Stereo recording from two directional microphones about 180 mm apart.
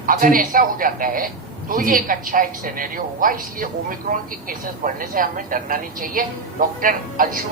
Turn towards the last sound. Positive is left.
turn(degrees=-50)  # may be behind; listen again after turning